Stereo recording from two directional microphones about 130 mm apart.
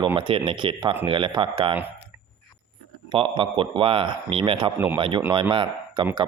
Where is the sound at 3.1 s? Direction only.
40° right (ahead or behind).